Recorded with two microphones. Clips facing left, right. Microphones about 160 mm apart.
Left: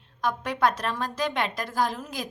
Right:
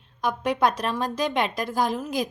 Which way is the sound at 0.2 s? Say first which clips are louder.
Right 2 dB; 15° right (ahead or behind).